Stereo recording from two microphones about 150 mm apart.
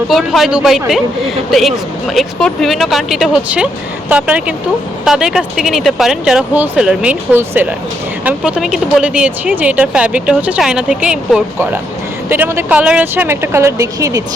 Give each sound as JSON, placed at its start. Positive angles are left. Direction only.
{"t": 0.1, "sound": "speech", "side_deg": 0}
{"t": 12.3, "sound": "speech", "side_deg": -15}